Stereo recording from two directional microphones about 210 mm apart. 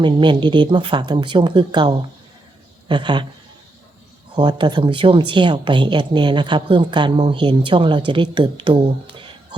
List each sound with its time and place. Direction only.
0.0 s speech: 20° right (ahead or behind)
4.4 s speech: 20° right (ahead or behind)